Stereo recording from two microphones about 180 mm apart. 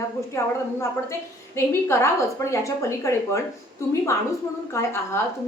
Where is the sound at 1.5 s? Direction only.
15° left (ahead or behind).